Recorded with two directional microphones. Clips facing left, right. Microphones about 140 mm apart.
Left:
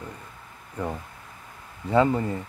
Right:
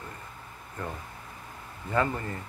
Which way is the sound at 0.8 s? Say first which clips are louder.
Left 6 dB; 15° left (ahead or behind).